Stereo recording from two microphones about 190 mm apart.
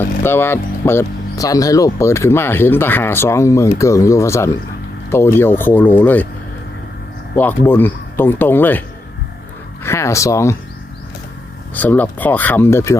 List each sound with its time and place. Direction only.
0.2 s speech: 10° left (ahead or behind)
7.3 s speech: 10° left (ahead or behind)
9.8 s speech: 15° left (ahead or behind)
11.7 s speech: 10° left (ahead or behind)